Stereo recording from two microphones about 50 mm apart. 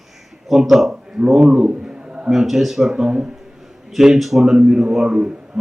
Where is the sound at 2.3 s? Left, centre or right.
Centre.